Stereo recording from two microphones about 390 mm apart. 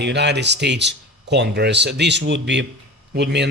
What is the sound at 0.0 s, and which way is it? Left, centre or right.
A man's voice, right.